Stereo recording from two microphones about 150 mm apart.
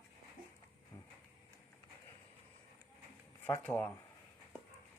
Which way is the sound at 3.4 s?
15° left (ahead or behind).